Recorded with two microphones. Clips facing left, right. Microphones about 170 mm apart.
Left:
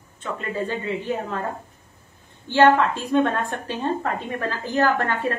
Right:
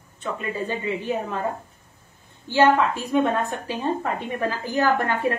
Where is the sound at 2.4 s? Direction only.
10° right (ahead or behind).